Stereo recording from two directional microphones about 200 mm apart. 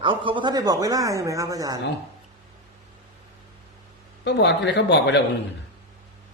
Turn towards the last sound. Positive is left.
turn(degrees=60)  # may be behind; listen again after turning